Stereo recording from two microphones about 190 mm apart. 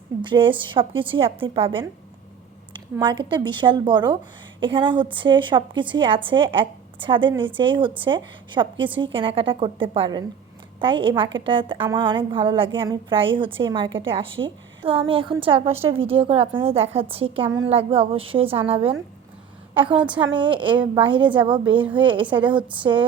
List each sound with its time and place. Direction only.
0.2 s a woman's voice: 25° right (ahead or behind)
3.0 s a woman's voice: 25° right (ahead or behind)